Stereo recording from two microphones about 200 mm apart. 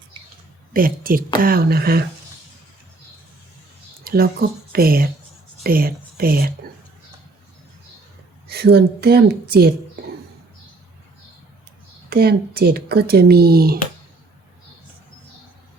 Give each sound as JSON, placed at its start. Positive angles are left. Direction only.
{"t": 0.7, "sound": "speech", "side_deg": -45}
{"t": 4.0, "sound": "speech", "side_deg": -50}
{"t": 8.4, "sound": "speech", "side_deg": -55}
{"t": 12.0, "sound": "speech", "side_deg": -50}